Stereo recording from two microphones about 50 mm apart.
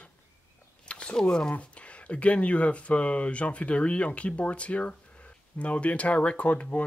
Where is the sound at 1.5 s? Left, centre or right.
Left.